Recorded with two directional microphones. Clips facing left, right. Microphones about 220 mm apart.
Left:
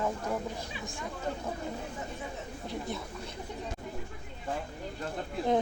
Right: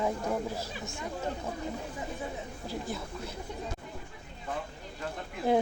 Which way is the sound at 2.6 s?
Centre (ahead or behind).